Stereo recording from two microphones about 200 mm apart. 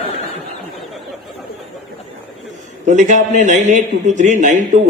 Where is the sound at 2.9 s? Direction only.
40° right (ahead or behind).